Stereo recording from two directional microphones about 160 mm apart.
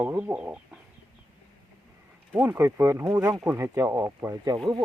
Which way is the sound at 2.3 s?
10° right (ahead or behind).